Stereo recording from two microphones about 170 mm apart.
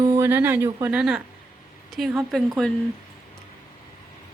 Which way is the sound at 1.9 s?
Centre (ahead or behind).